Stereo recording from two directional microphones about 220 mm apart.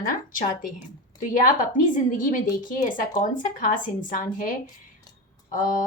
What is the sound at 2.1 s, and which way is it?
Speech, 35° left (ahead or behind).